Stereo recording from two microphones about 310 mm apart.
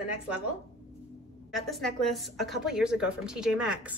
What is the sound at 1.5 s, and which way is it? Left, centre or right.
A woman's voice, centre.